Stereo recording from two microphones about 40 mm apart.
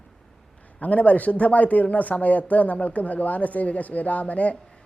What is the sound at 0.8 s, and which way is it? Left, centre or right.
Speech, left.